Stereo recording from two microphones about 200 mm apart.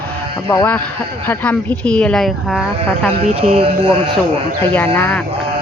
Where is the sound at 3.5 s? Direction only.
25° right (ahead or behind).